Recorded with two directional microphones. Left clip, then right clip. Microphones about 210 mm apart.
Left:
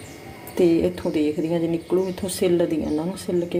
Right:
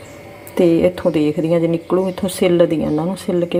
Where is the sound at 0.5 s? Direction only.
15° right (ahead or behind).